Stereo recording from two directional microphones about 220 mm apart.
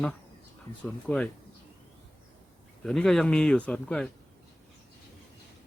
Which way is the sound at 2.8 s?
Centre (ahead or behind).